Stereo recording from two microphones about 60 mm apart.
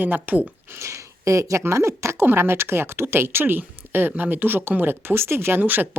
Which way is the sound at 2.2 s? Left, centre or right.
Right.